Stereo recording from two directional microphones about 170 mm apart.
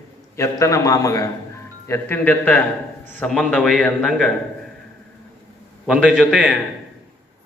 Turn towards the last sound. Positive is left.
turn(degrees=0)  # may be behind; listen again after turning